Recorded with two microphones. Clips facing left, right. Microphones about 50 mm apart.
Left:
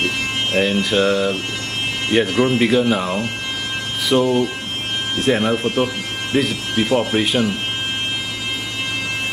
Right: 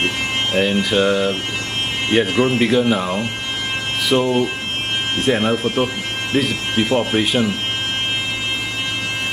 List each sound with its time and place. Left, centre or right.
0.6 s speech: centre